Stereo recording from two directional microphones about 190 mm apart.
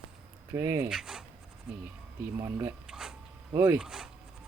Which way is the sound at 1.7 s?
5° right (ahead or behind).